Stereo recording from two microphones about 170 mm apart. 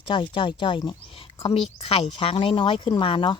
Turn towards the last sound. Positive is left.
turn(degrees=30)  # may be behind; listen again after turning